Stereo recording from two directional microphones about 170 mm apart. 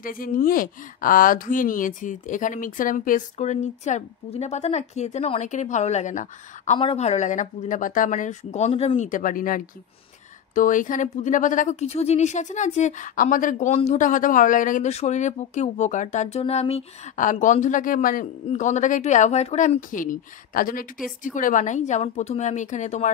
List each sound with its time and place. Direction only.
0.0 s speech: 55° left (ahead or behind)
6.8 s speech: 35° left (ahead or behind)